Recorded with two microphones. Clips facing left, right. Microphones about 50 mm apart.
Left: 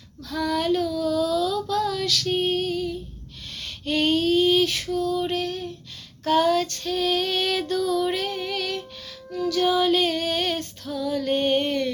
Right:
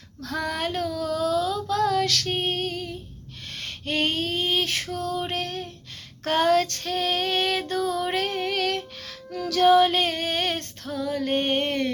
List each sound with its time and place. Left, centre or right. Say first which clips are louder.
0.2 s female singing: left 3 dB; right
1.8 s female singing: right 2 dB; right
9.3 s female singing: right 4 dB; right
10.8 s music: left 1 dB; right